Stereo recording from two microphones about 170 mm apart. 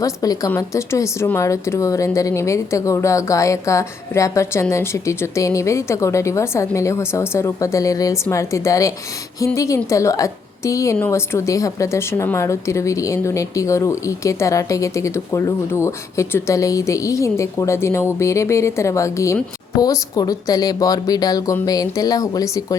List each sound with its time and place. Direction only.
0.0 s a woman's voice: 20° left (ahead or behind)